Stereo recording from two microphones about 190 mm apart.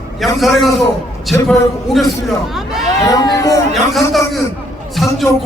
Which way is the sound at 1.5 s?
Centre (ahead or behind).